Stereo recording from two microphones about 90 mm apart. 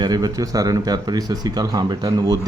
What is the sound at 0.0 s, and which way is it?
Speech, 45° right (ahead or behind).